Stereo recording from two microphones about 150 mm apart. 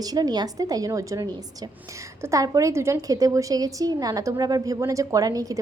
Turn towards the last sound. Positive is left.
turn(degrees=-25)  # may be behind; listen again after turning